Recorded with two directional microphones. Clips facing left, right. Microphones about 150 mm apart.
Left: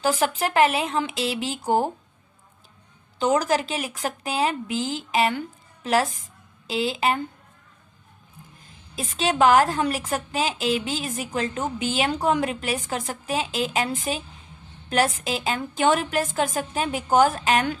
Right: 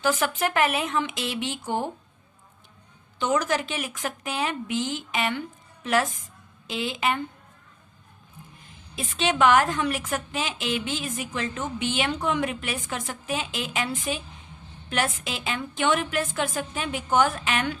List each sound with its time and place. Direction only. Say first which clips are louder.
0.0 s a woman's voice: left 2 dB; 35° left (ahead or behind)
3.2 s a woman's voice: left 3 dB; 35° left (ahead or behind)
9.0 s a woman's voice: left 2 dB; 35° left (ahead or behind)